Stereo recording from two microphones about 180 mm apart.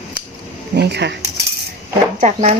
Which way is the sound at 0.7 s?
65° right (ahead or behind).